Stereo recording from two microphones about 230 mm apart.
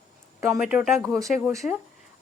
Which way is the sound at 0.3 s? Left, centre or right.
Centre.